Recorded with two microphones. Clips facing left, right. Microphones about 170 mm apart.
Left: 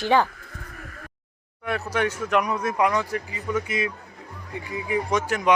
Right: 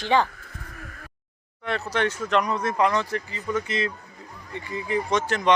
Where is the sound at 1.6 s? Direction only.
10° left (ahead or behind).